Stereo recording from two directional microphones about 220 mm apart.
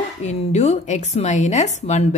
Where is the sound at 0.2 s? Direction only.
30° left (ahead or behind).